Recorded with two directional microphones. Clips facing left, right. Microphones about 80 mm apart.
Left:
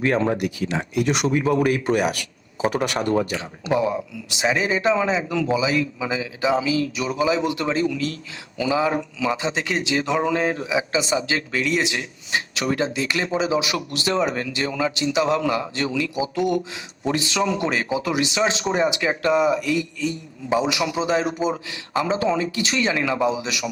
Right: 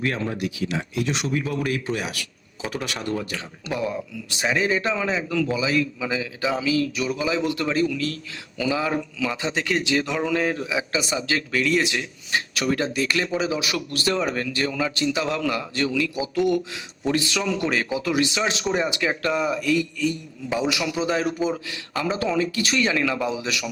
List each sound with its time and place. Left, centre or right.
0.0 s speech: left
1.0 s speech: left
1.3 s speech: left
2.6 s speech: left
3.2 s speech: left